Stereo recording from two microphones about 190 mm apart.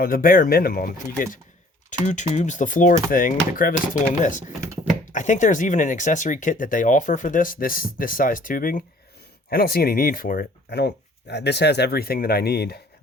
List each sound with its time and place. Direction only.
0.0 s speech: 50° left (ahead or behind)